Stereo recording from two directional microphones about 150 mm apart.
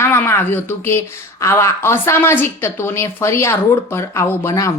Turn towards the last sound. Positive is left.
turn(degrees=20)  # may be behind; listen again after turning